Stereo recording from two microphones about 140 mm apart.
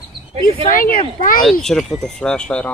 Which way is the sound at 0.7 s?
90° left.